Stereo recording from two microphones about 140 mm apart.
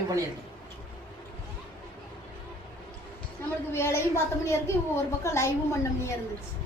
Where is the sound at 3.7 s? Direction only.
15° left (ahead or behind).